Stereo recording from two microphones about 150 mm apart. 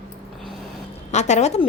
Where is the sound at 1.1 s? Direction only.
50° left (ahead or behind).